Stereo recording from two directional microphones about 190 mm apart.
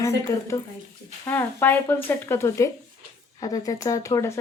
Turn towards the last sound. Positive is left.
turn(degrees=15)  # may be behind; listen again after turning